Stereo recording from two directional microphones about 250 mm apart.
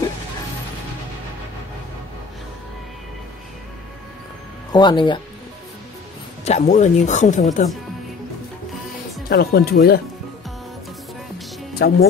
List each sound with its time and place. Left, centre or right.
4.7 s speech: centre
6.4 s speech: left
9.3 s speech: left
11.7 s speech: left